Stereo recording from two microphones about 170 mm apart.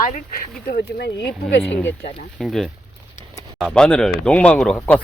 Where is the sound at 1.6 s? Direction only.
10° left (ahead or behind).